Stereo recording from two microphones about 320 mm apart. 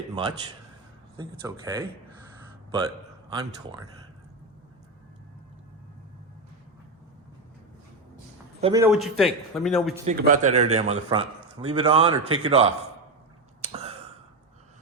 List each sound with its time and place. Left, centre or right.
1.1 s speech: centre
8.6 s speech: centre
8.9 s a man's voice: centre
10.1 s speech: right
13.6 s a sound: centre